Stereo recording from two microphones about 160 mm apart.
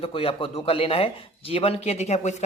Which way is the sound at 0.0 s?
35° left (ahead or behind).